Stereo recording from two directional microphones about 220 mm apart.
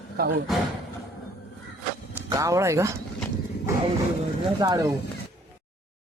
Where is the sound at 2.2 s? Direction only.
15° right (ahead or behind).